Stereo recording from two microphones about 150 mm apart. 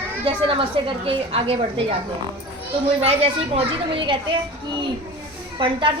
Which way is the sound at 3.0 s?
40° right (ahead or behind).